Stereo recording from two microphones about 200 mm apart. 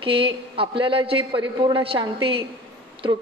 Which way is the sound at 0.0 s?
25° right (ahead or behind).